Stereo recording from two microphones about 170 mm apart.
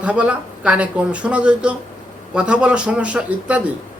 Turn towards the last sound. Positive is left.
turn(degrees=-5)  # may be behind; listen again after turning